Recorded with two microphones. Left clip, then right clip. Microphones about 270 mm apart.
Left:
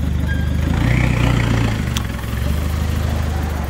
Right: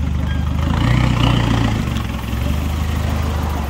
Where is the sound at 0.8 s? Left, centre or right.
Centre.